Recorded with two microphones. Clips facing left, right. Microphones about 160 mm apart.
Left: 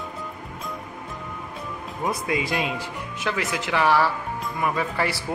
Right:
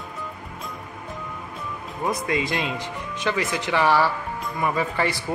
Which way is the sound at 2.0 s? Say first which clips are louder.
Right 1 dB; 10° left (ahead or behind).